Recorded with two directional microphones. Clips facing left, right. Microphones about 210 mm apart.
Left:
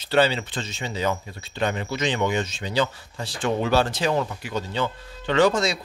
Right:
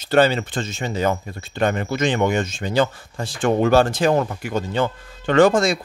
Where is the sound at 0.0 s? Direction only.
50° right (ahead or behind).